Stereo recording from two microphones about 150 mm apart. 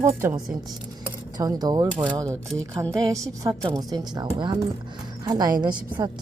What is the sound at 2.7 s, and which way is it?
A woman's voice, 25° right (ahead or behind).